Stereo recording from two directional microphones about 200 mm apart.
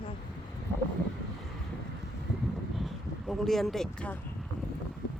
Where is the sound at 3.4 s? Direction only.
Centre (ahead or behind).